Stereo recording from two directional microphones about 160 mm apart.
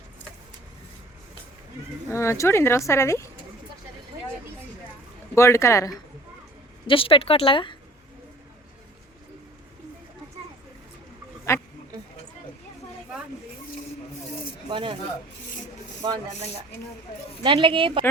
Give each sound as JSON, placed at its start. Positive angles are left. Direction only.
{"t": 2.0, "sound": "speech", "side_deg": 15}
{"t": 5.3, "sound": "speech", "side_deg": 15}
{"t": 6.8, "sound": "speech", "side_deg": 35}
{"t": 14.7, "sound": "speech", "side_deg": -30}
{"t": 16.0, "sound": "rub", "side_deg": -25}
{"t": 17.4, "sound": "speech", "side_deg": -30}